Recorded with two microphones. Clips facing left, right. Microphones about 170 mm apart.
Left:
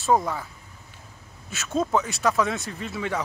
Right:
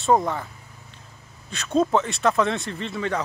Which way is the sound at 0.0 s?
Centre (ahead or behind).